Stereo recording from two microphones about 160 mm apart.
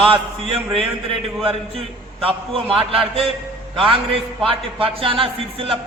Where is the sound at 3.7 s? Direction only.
35° right (ahead or behind).